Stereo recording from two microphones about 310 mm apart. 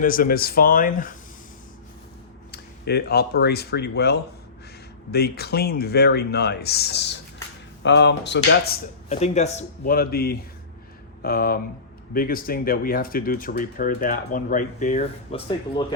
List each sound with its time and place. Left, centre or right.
0.0 s speech: left
2.5 s speech: left; by 16.0 s centre